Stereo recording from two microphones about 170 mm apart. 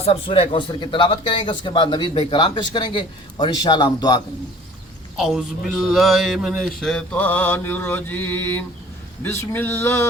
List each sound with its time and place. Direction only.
0.0 s speech: 35° left (ahead or behind)
5.1 s a man's voice: centre (ahead or behind)
9.2 s a sound: 15° left (ahead or behind)